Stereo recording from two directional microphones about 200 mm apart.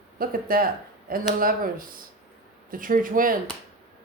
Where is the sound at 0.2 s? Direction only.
45° right (ahead or behind).